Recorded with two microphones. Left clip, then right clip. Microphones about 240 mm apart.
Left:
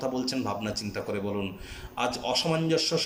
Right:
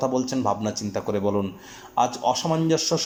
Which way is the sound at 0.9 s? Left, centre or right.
Right.